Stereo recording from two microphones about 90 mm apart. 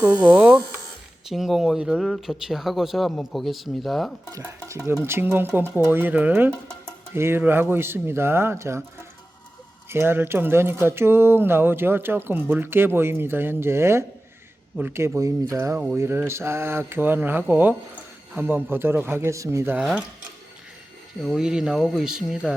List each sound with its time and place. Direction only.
0.3 s speech: 20° right (ahead or behind)
1.3 s speech: centre (ahead or behind)
4.3 s stir: 35° right (ahead or behind)
5.0 s speech: 25° right (ahead or behind)
9.9 s speech: 25° right (ahead or behind)
15.5 s stir: 35° right (ahead or behind)
16.0 s speech: 30° right (ahead or behind)
21.2 s speech: centre (ahead or behind)